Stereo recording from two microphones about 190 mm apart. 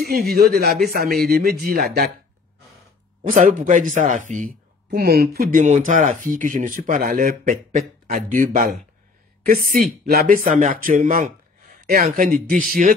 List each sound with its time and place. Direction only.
0.0 s a man's voice: 55° right (ahead or behind)
3.3 s speech: 40° right (ahead or behind)